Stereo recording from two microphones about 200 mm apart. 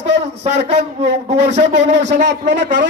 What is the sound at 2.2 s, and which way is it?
Speech, 60° right (ahead or behind).